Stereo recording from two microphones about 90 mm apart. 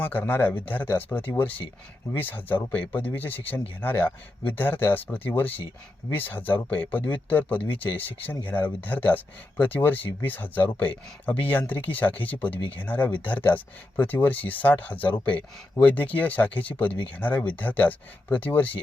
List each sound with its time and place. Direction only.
0.0 s speech: 20° left (ahead or behind)